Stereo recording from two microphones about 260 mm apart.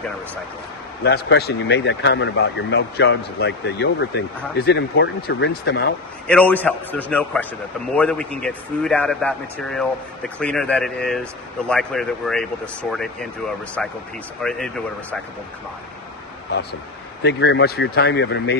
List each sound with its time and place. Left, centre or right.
1.0 s speech: left
6.2 s a man's voice: centre
17.2 s speech: left